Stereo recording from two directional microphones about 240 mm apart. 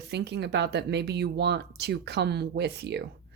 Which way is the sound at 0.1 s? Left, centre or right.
Right.